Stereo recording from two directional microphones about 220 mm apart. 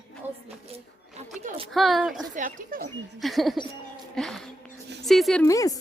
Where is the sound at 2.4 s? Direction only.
35° right (ahead or behind).